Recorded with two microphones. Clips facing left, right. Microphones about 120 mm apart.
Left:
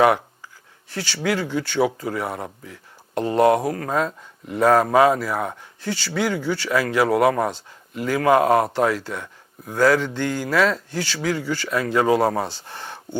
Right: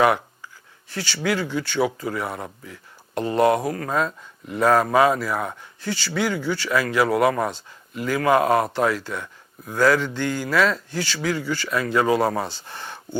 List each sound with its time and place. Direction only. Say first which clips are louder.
1.2 s speech: left 1 dB; 40° left (ahead or behind)